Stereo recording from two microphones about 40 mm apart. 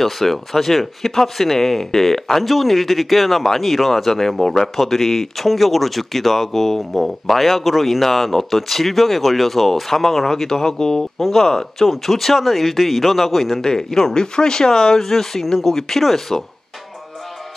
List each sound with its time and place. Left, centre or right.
0.0 s speech: centre
2.4 s speech: centre
13.6 s speech: centre